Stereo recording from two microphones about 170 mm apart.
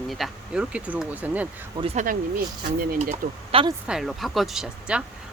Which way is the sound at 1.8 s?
35° right (ahead or behind).